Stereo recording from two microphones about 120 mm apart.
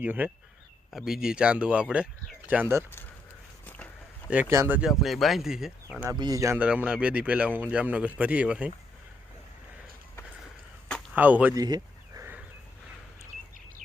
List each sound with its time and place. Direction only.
0.0 s speech: 15° right (ahead or behind)
4.4 s speech: 25° right (ahead or behind)
4.8 s speech: centre (ahead or behind)
6.1 s speech: 30° right (ahead or behind)
6.6 s speech: 10° right (ahead or behind)
11.1 s speech: 15° right (ahead or behind)
11.5 s a sound: 30° right (ahead or behind)
12.2 s wild animals: 15° right (ahead or behind)